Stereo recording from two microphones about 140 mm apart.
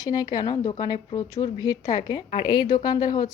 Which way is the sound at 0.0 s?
25° left (ahead or behind).